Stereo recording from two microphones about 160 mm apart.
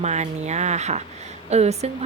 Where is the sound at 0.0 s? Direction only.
45° right (ahead or behind).